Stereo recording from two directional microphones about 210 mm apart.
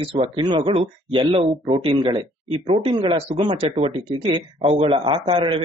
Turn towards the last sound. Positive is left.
turn(degrees=-25)  # may be behind; listen again after turning